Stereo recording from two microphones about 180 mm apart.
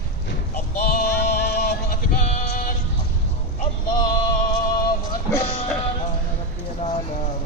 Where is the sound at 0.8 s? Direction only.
55° left (ahead or behind).